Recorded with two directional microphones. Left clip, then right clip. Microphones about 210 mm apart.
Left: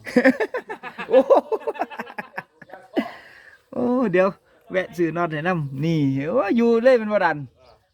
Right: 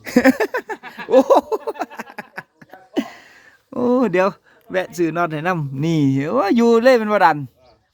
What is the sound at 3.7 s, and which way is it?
Speech, 25° right (ahead or behind).